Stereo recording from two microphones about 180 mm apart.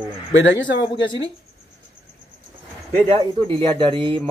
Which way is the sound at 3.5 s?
25° right (ahead or behind).